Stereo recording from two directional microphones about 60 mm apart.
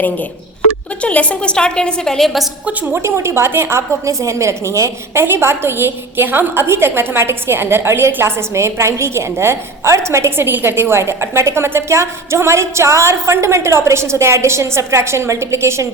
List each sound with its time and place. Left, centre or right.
1.0 s a woman's voice: left; by 2.5 s centre
2.9 s a woman's voice: right
5.2 s a woman's voice: right